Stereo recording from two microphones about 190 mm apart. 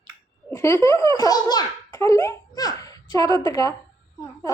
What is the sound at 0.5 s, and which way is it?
A child's voice, 15° left (ahead or behind).